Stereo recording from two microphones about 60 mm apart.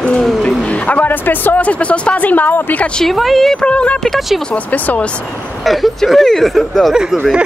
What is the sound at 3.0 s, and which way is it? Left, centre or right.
Speech, centre.